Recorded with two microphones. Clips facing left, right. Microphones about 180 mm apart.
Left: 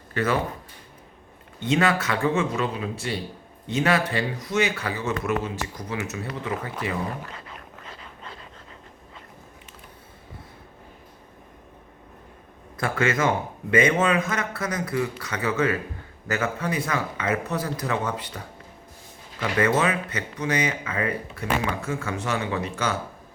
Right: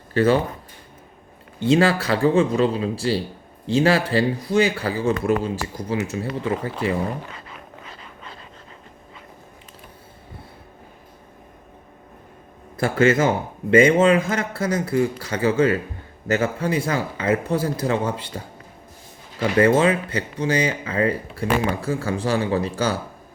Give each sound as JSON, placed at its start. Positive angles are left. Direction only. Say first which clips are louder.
{"t": 0.1, "sound": "speech", "louder": "right 7 dB", "side_deg": -30}
{"t": 1.5, "sound": "speech", "louder": "right 5 dB", "side_deg": -30}
{"t": 12.7, "sound": "speech", "louder": "right 7 dB", "side_deg": -30}